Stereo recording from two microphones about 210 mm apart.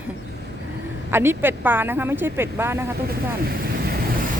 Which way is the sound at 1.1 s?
10° right (ahead or behind).